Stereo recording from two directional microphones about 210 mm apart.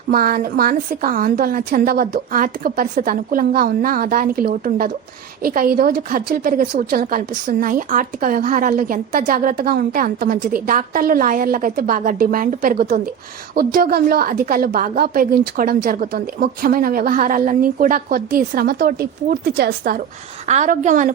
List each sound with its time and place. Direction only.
0.1 s a woman's voice: 45° right (ahead or behind)
20.5 s a woman's voice: 35° right (ahead or behind)